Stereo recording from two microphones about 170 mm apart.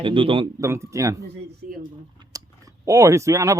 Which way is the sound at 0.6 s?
15° right (ahead or behind).